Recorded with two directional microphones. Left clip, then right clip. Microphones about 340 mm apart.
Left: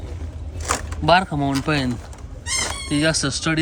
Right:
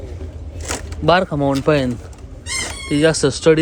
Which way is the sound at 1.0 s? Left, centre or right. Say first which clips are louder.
Right 3 dB; centre.